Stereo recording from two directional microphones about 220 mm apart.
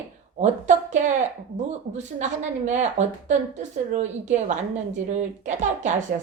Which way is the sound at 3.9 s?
35° right (ahead or behind).